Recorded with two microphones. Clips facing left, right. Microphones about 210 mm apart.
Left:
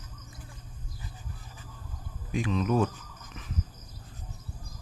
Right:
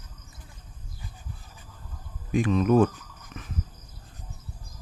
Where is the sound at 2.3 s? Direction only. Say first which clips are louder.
Right 6 dB; 50° right (ahead or behind).